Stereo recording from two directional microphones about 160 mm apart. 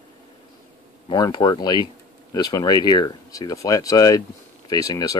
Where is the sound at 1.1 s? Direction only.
25° left (ahead or behind).